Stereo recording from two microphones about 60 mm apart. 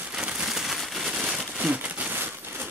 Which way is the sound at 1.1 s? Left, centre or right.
Centre.